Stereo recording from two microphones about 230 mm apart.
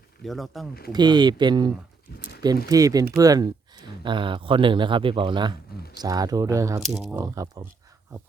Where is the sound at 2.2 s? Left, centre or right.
Left.